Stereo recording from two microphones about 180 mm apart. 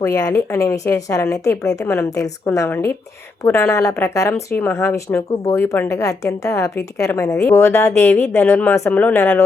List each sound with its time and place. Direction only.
0.0 s speech: 20° left (ahead or behind)